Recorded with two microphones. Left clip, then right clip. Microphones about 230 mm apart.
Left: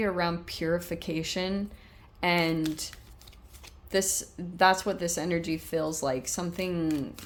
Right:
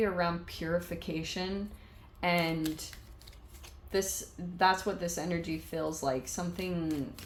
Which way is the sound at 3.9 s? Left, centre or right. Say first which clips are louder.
Left 4 dB; left.